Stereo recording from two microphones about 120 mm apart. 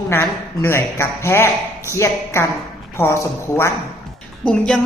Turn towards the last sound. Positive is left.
turn(degrees=5)  # may be behind; listen again after turning